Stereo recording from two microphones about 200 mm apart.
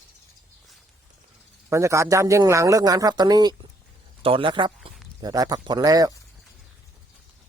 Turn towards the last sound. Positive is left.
turn(degrees=-15)  # may be behind; listen again after turning